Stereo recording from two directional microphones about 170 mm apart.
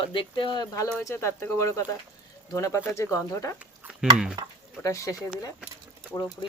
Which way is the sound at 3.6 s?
5° right (ahead or behind).